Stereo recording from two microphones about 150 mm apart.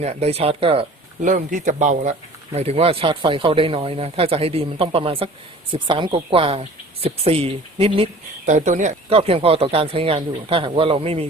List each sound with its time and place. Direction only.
0.0 s speech: 45° right (ahead or behind)
1.2 s speech: 60° right (ahead or behind)
2.5 s speech: 45° right (ahead or behind)
8.4 s speech: 55° right (ahead or behind)